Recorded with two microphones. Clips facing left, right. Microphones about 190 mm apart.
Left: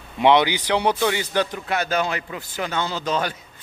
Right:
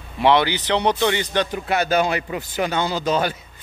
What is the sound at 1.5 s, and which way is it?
A man's voice, 5° right (ahead or behind).